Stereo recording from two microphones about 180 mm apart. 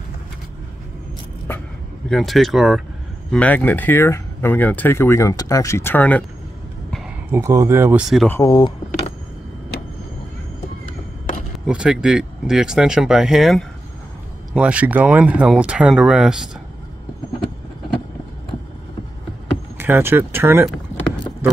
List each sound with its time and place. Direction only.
2.0 s speech: centre (ahead or behind)
7.2 s speech: 15° right (ahead or behind)
8.3 s speech: 20° left (ahead or behind)
11.5 s speech: 5° right (ahead or behind)
19.8 s speech: 10° right (ahead or behind)